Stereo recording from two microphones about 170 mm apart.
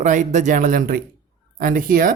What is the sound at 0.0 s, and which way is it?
Speech, 45° right (ahead or behind).